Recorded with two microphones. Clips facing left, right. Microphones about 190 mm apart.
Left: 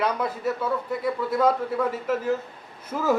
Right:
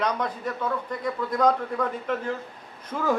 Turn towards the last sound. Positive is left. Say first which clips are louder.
# left 2 dB
turn(degrees=5)  # may be behind; listen again after turning